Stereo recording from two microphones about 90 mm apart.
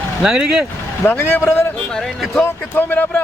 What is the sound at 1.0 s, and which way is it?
Speech, 25° left (ahead or behind).